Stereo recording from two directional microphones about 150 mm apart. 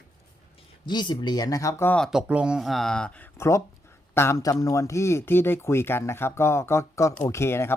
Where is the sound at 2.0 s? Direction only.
5° right (ahead or behind).